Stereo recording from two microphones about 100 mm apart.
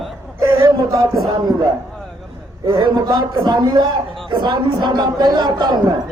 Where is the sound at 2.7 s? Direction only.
45° right (ahead or behind).